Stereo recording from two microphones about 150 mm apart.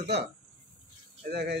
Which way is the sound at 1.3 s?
90° right.